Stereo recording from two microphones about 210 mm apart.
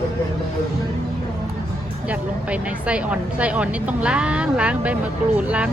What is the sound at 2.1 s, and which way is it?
Speech, 5° right (ahead or behind).